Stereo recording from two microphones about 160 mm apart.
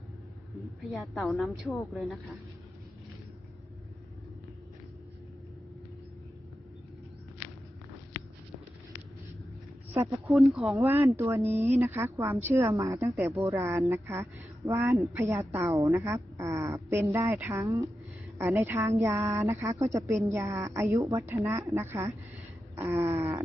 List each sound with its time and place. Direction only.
0.6 s a woman's voice: centre (ahead or behind)
10.2 s a woman's voice: centre (ahead or behind)
10.8 s a woman's voice: 15° right (ahead or behind)